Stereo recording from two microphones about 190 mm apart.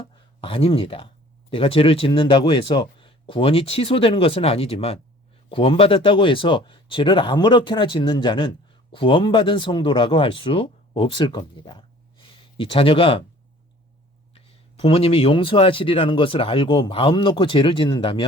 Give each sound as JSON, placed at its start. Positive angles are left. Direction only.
{"t": 0.4, "sound": "speech", "side_deg": 30}
{"t": 14.3, "sound": "speech", "side_deg": 30}